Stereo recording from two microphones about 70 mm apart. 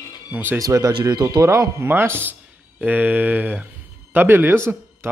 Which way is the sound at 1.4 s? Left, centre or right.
Right.